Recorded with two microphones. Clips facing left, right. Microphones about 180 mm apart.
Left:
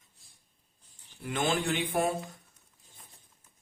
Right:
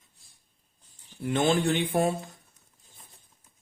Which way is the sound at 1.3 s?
30° right (ahead or behind).